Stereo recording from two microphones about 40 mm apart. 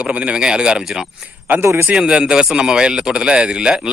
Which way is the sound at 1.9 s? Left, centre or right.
Right.